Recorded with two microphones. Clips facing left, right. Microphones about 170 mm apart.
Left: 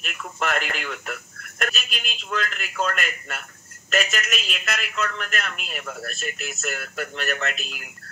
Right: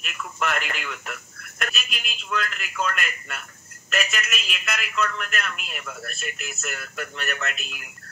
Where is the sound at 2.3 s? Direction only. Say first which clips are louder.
Even; 40° left (ahead or behind).